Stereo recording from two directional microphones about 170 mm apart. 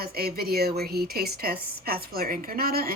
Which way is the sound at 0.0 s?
65° right (ahead or behind).